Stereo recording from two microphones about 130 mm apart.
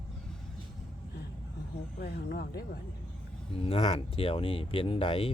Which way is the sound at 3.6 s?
50° left (ahead or behind).